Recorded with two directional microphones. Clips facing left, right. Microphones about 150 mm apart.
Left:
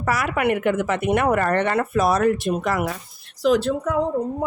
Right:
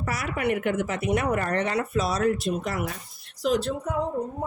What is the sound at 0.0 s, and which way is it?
A woman's voice, 85° left.